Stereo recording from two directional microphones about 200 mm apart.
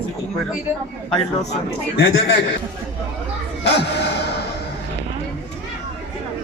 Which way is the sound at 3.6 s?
60° left (ahead or behind).